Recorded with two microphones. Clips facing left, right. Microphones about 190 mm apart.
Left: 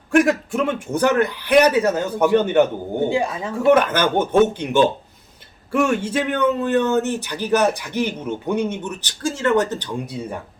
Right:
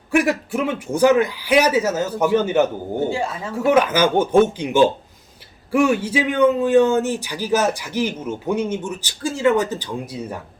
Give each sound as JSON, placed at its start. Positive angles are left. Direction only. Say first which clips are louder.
{"t": 0.1, "sound": "speech", "louder": "left 2 dB", "side_deg": -5}
{"t": 3.1, "sound": "speech", "louder": "left 3 dB", "side_deg": 15}
{"t": 3.7, "sound": "speech", "louder": "even", "side_deg": -10}